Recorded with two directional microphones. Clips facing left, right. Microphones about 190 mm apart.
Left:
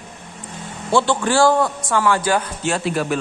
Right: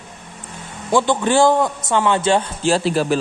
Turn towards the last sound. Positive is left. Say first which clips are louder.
# right 4 dB
turn(degrees=-30)  # may be behind; listen again after turning